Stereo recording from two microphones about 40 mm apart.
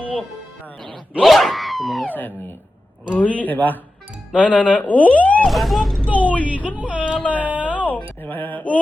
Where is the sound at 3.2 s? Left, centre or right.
Left.